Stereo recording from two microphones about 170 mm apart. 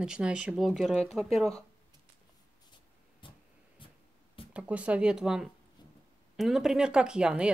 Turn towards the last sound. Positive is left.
turn(degrees=-5)  # may be behind; listen again after turning